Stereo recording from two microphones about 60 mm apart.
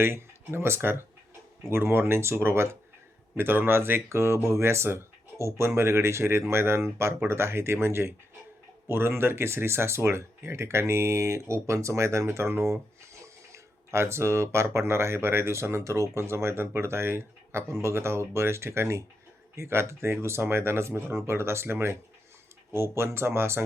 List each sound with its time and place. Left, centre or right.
0.0 s speech: right